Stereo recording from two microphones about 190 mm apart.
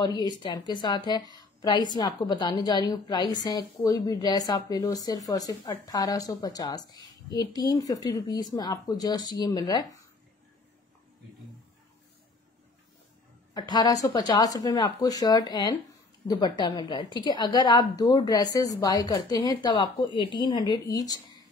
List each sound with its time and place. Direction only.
0.0 s a woman's voice: 20° left (ahead or behind)
13.5 s a woman's voice: 20° left (ahead or behind)